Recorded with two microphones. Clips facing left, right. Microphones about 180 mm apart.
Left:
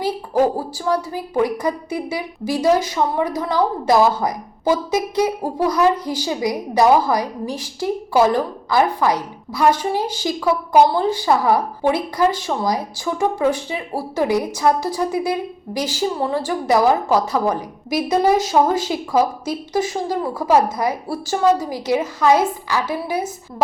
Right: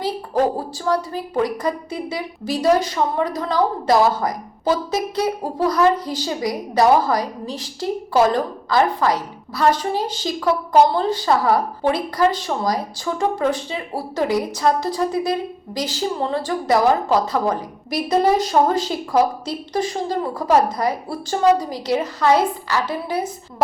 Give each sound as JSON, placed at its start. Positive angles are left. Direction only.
{"t": 0.0, "sound": "a woman's voice", "side_deg": 10}